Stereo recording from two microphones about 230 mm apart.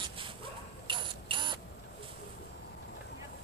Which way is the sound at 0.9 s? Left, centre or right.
Right.